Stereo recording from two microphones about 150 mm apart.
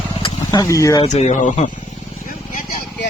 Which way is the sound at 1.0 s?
55° left (ahead or behind).